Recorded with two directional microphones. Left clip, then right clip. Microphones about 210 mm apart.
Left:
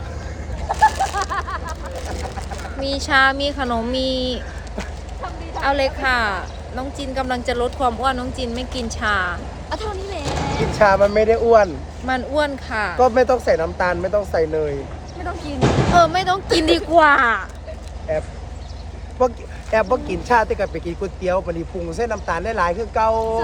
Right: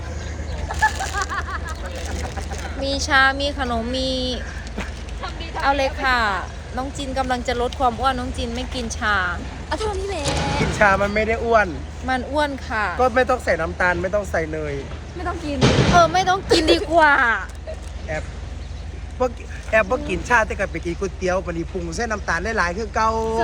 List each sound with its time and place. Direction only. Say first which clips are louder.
0.7 s a sound: left 5 dB; 35° left (ahead or behind)
2.8 s speech: left 1 dB; 10° left (ahead or behind)
9.6 s vehicle: right 2 dB; 55° right (ahead or behind)
10.8 s speech: left 4 dB; 50° left (ahead or behind)
12.0 s speech: left 1 dB; 15° left (ahead or behind)
13.0 s speech: left 4 dB; 50° left (ahead or behind)
15.6 s speech: left 1 dB; 10° left (ahead or behind)
19.2 s speech: left 4 dB; 50° left (ahead or behind)
21.8 s speech: left 2 dB; 30° left (ahead or behind)